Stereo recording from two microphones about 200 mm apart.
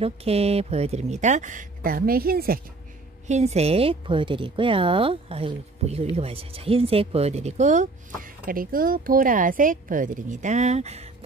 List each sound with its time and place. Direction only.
0.0 s speech: 30° right (ahead or behind); by 2.6 s 50° right (ahead or behind)
3.3 s a woman's voice: 35° right (ahead or behind)